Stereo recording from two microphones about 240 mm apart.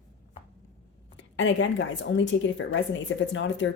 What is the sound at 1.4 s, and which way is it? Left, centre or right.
A woman's voice, left.